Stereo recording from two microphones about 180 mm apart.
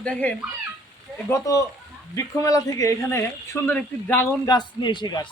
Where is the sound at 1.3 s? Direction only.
20° left (ahead or behind).